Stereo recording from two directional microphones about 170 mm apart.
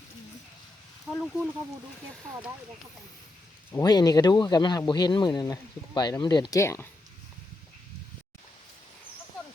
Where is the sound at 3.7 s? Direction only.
20° left (ahead or behind).